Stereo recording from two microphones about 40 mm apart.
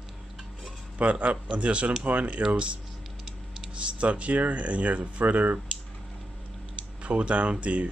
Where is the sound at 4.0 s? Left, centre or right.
Right.